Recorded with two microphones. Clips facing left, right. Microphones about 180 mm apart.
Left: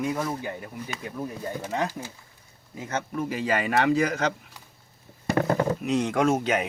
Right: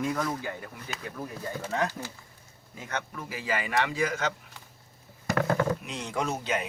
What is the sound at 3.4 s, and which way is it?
Speech, 40° left (ahead or behind).